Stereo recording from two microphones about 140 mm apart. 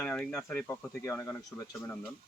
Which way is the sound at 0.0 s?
5° left (ahead or behind).